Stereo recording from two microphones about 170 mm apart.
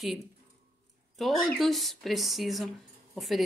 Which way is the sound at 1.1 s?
Centre (ahead or behind).